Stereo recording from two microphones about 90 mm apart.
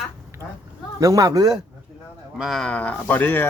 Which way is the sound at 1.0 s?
40° right (ahead or behind).